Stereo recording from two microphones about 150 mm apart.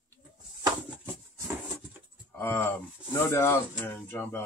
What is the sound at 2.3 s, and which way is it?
Speech, 15° left (ahead or behind).